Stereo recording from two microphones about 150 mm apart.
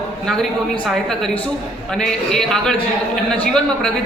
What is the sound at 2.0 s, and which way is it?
Speech, 5° left (ahead or behind).